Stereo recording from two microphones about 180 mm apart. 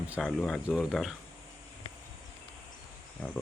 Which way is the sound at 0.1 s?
Centre (ahead or behind).